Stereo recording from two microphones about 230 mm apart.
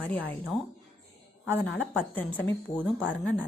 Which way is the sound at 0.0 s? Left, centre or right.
Centre.